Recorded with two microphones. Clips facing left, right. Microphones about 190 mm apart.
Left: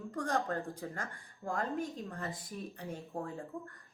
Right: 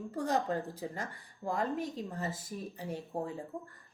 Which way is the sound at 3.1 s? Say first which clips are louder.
Right 3 dB; 20° right (ahead or behind).